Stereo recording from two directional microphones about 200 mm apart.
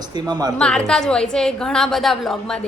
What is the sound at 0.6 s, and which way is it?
A woman's voice, 5° left (ahead or behind).